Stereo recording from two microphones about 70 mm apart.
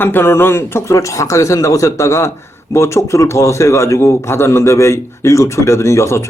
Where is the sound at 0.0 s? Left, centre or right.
Left.